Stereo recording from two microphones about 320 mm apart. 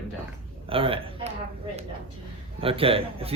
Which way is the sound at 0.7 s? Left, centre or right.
Centre.